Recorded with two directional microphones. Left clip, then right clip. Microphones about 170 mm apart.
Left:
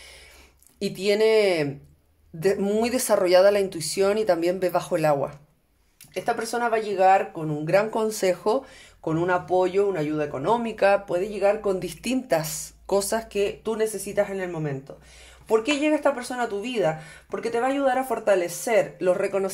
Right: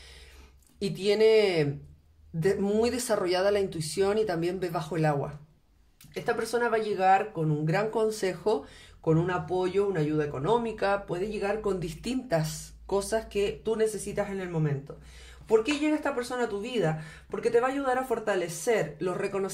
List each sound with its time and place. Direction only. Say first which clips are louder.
0.7 s speech: left 3 dB; 40° left (ahead or behind)